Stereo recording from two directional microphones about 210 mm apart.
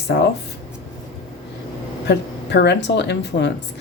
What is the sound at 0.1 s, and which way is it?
Speech, 55° left (ahead or behind).